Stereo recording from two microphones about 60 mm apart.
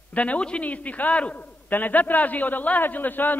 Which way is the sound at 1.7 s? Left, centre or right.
Left.